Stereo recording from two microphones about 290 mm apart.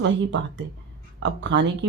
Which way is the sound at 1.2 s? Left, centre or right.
Right.